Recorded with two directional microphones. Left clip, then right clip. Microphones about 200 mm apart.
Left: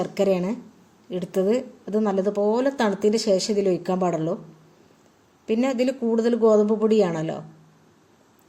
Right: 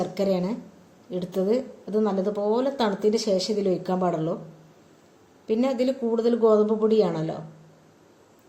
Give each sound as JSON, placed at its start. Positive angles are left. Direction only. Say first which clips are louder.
{"t": 0.0, "sound": "a woman's voice", "louder": "left 3 dB", "side_deg": 40}
{"t": 5.5, "sound": "a woman's voice", "louder": "left 1 dB", "side_deg": 40}